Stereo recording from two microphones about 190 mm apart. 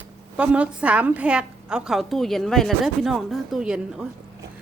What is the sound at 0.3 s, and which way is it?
A woman's voice, 5° right (ahead or behind).